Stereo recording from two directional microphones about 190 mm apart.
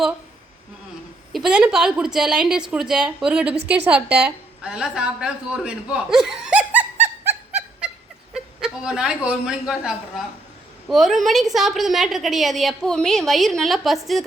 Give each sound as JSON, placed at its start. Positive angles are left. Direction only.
{"t": 1.3, "sound": "a woman's voice", "side_deg": -5}